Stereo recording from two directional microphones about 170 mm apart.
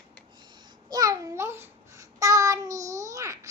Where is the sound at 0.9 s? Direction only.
20° right (ahead or behind).